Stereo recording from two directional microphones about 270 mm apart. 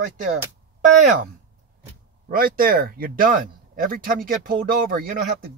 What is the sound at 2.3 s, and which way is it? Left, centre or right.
Speech, right.